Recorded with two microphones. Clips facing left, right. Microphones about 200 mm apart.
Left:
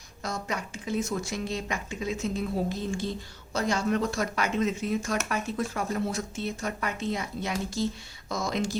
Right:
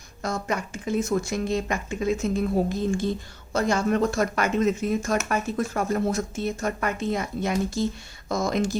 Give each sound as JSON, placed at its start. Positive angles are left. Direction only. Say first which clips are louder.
{"t": 0.2, "sound": "speech", "louder": "right 5 dB", "side_deg": -50}